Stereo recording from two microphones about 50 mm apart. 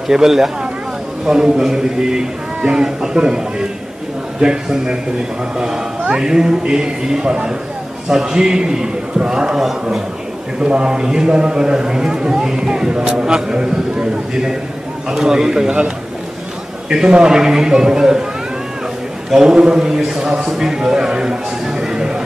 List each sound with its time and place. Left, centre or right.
0.1 s a man's voice: centre
6.0 s a man's voice: centre
10.6 s a man's voice: centre
16.9 s a man's voice: centre
19.3 s a man's voice: centre